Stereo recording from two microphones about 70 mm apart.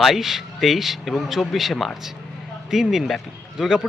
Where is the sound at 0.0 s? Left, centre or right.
Centre.